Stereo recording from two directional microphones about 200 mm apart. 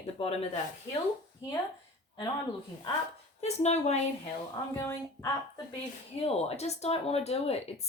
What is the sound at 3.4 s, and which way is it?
Speech, 35° left (ahead or behind).